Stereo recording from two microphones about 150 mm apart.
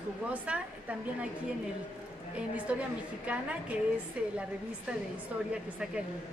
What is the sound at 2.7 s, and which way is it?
Speech, 10° right (ahead or behind).